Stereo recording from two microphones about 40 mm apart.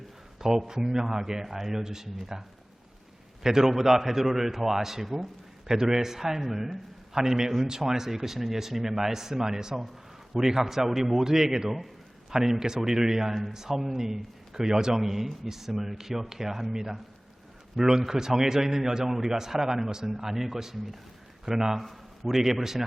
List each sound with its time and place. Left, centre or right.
0.3 s a man's voice: centre
3.4 s a man's voice: centre